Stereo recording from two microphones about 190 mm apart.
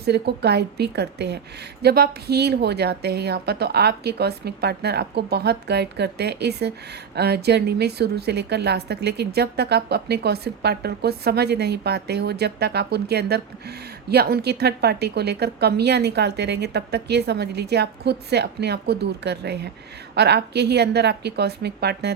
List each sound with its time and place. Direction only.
0.0 s a woman's voice: 60° right (ahead or behind)